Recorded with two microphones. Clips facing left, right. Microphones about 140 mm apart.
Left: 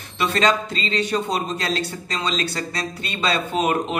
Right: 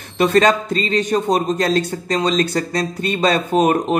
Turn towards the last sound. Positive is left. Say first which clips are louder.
# right 6 dB
turn(degrees=-45)  # may be behind; listen again after turning